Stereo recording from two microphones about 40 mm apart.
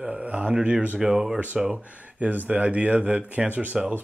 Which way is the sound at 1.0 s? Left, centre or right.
Centre.